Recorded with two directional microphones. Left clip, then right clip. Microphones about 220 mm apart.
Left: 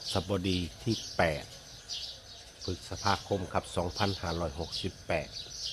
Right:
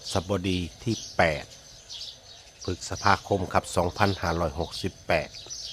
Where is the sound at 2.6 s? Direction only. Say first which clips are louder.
Right 7 dB; 20° right (ahead or behind).